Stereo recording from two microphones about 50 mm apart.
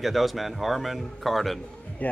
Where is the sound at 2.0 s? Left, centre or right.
Left.